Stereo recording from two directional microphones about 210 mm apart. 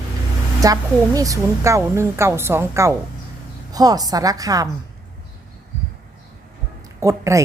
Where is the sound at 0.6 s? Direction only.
15° right (ahead or behind).